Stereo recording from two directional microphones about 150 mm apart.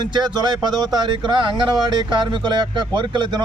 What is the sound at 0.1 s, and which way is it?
A man's voice, 30° right (ahead or behind).